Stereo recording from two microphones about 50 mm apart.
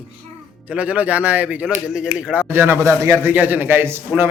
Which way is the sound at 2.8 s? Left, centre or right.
Right.